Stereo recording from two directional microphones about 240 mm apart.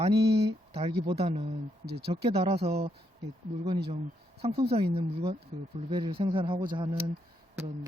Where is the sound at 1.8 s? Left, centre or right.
Right.